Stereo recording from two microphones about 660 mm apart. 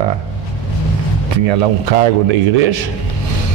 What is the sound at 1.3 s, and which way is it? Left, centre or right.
A man's voice, right.